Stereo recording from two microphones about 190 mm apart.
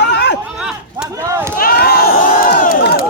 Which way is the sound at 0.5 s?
5° right (ahead or behind).